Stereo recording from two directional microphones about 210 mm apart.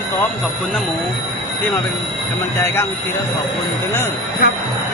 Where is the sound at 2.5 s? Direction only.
10° left (ahead or behind).